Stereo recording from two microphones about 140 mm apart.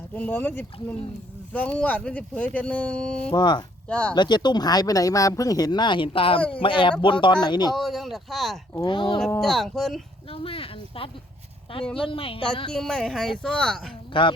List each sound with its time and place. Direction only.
0.1 s speech: 10° left (ahead or behind)
3.3 s speech: 30° left (ahead or behind)
3.8 s speech: 10° left (ahead or behind)
4.1 s speech: 30° left (ahead or behind)
7.8 s speech: centre (ahead or behind)
8.9 s speech: 40° left (ahead or behind)
9.4 s speech: centre (ahead or behind)
10.2 s speech: 40° left (ahead or behind)
12.7 s speech: 5° left (ahead or behind)
14.1 s speech: 35° left (ahead or behind)